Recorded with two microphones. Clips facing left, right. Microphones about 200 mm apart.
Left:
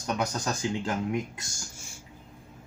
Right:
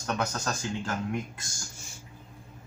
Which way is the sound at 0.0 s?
15° left (ahead or behind).